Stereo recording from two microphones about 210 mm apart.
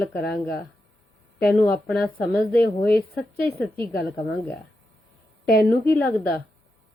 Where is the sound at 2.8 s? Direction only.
50° left (ahead or behind).